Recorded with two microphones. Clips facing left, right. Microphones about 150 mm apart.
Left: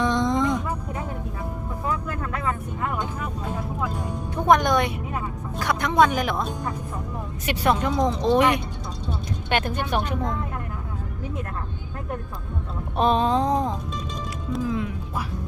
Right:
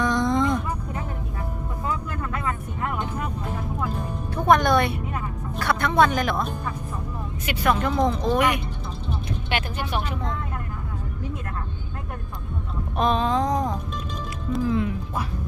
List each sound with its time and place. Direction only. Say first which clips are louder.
0.0 s vehicle: even; 20° left (ahead or behind)
4.4 s music: even; 15° left (ahead or behind)
7.4 s a sound: left 1 dB; 35° left (ahead or behind)
7.8 s speech: even; 15° left (ahead or behind)
8.2 s speech: left 3 dB; 25° left (ahead or behind)
9.5 s speech: left 4 dB; 50° left (ahead or behind)
13.0 s a sound: left 2 dB; 35° left (ahead or behind)
14.5 s music: right 3 dB; centre (ahead or behind)